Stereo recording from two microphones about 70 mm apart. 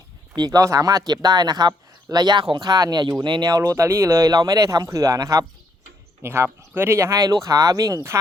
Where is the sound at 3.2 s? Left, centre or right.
Right.